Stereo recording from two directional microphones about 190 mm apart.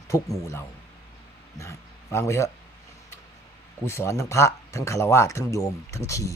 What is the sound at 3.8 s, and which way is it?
Speech, 15° left (ahead or behind).